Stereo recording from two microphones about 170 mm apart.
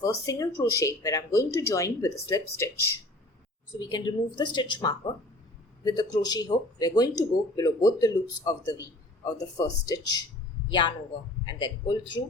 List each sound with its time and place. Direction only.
0.0 s speech: 20° left (ahead or behind)